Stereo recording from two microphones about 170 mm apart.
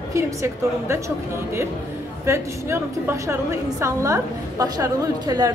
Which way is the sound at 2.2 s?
15° right (ahead or behind).